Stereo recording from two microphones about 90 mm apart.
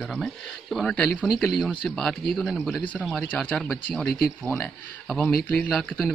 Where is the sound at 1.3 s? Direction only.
Centre (ahead or behind).